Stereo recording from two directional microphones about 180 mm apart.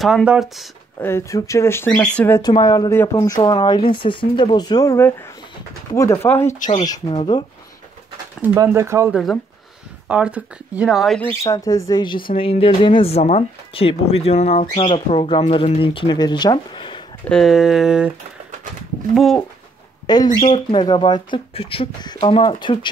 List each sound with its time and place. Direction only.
0.0 s speech: 5° right (ahead or behind)
0.9 s speech: 15° left (ahead or behind)
2.4 s speech: 20° left (ahead or behind)
6.8 s speech: 25° left (ahead or behind)
8.4 s speech: 15° right (ahead or behind)
9.1 s speech: centre (ahead or behind)
11.4 s speech: 20° left (ahead or behind)
17.3 s speech: centre (ahead or behind)
19.1 s speech: centre (ahead or behind)
20.3 s speech: 30° left (ahead or behind)